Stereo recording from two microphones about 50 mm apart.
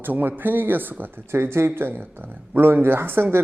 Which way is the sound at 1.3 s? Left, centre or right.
Right.